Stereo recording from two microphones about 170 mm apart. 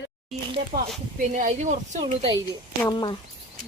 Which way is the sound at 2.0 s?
35° right (ahead or behind).